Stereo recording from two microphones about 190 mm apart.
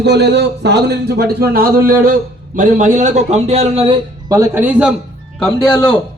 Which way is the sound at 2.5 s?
40° right (ahead or behind).